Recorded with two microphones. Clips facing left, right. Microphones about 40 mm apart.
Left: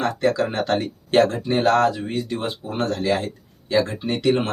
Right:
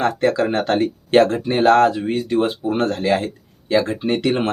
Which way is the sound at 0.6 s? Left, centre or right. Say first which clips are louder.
Right 4 dB; right.